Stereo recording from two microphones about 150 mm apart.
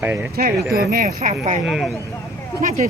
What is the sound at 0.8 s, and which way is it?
Speech, 75° right (ahead or behind).